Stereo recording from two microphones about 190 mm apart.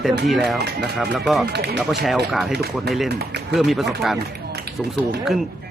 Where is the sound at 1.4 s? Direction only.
60° right (ahead or behind).